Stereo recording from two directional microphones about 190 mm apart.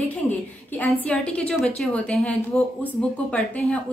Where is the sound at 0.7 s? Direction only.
5° left (ahead or behind).